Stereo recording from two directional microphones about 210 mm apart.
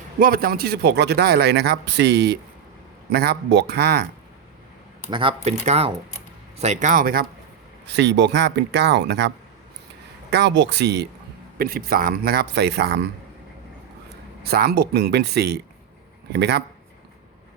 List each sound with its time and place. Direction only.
0.2 s speech: 45° right (ahead or behind)
5.1 s speech: 25° right (ahead or behind); by 7.3 s 45° right (ahead or behind)
7.9 s speech: 55° right (ahead or behind)
14.4 s speech: 50° right (ahead or behind)